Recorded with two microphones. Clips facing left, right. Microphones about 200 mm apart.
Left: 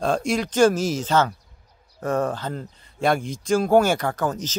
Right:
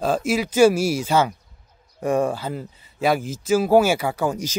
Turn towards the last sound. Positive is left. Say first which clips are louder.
# right 2 dB
turn(degrees=-10)  # may be behind; listen again after turning